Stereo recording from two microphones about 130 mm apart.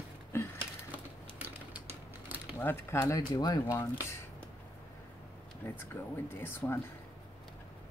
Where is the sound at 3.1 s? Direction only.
30° left (ahead or behind).